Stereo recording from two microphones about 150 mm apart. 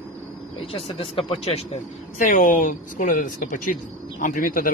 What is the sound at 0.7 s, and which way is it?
Speech, 40° left (ahead or behind).